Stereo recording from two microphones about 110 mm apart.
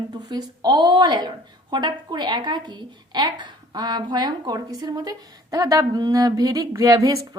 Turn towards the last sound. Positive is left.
turn(degrees=-30)  # may be behind; listen again after turning